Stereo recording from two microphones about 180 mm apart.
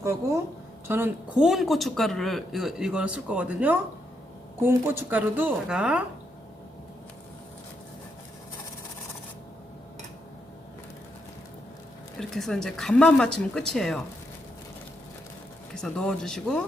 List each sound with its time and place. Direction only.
0.0 s a man's voice: 15° right (ahead or behind)
12.2 s a man's voice: centre (ahead or behind)
15.7 s a man's voice: 5° left (ahead or behind)